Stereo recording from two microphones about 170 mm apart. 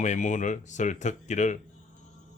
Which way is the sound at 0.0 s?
45° left (ahead or behind).